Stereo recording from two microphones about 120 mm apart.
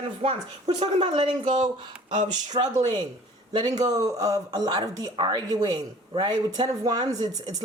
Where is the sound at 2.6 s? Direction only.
40° right (ahead or behind).